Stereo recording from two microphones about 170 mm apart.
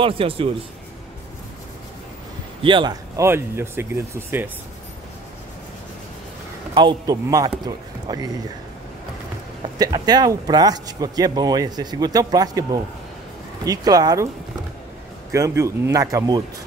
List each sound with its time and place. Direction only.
0.0 s a man's voice: 35° right (ahead or behind)
2.6 s speech: 30° right (ahead or behind)
6.7 s a man's voice: 25° right (ahead or behind)
9.8 s a man's voice: 25° right (ahead or behind)
13.7 s a man's voice: 20° right (ahead or behind)
15.3 s a man's voice: 15° right (ahead or behind)